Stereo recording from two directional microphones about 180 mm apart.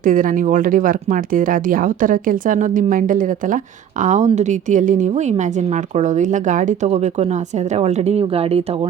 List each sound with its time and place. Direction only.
0.0 s speech: 50° right (ahead or behind)